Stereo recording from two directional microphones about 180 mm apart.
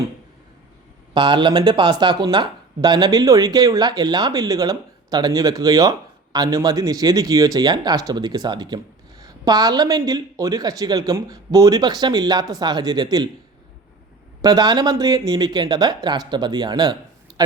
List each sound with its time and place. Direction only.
1.1 s speech: 25° right (ahead or behind)
14.4 s speech: 20° right (ahead or behind)